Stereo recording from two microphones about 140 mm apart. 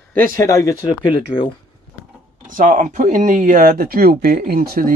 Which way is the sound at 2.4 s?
70° right (ahead or behind).